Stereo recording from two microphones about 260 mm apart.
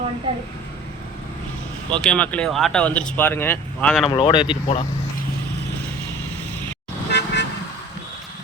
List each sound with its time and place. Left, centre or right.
2.0 s speech: centre
4.1 s speech: centre
7.1 s car: left